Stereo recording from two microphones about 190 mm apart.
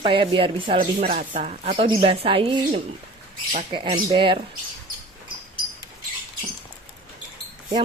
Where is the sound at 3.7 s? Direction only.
25° right (ahead or behind).